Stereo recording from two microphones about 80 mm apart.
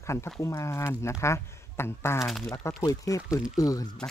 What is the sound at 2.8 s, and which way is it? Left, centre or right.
Speech, left.